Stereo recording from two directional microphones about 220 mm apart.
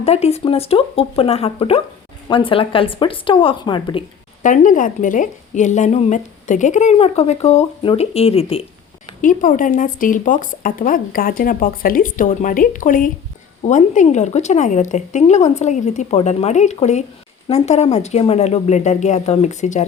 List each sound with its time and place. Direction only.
0.0 s speech: 30° left (ahead or behind)
4.4 s a woman's voice: 35° left (ahead or behind)
9.2 s a woman's voice: 35° left (ahead or behind)